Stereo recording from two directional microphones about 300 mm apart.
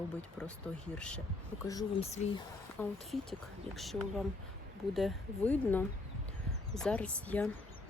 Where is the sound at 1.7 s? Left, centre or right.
Centre.